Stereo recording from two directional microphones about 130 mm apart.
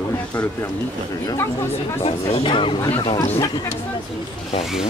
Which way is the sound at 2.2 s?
45° left (ahead or behind).